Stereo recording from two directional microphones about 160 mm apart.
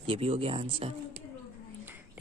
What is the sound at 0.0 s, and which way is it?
Speech, 35° right (ahead or behind).